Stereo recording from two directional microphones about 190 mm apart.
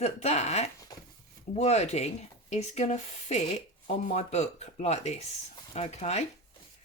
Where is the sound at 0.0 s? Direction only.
35° left (ahead or behind).